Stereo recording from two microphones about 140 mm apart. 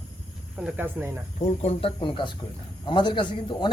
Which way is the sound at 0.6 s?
5° right (ahead or behind).